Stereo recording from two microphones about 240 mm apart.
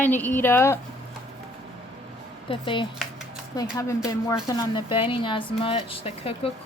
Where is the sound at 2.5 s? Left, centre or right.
Left.